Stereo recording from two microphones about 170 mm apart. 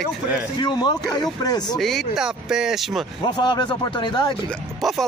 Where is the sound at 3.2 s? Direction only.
25° left (ahead or behind).